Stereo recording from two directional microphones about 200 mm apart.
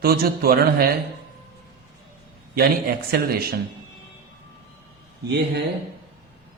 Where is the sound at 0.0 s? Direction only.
50° right (ahead or behind).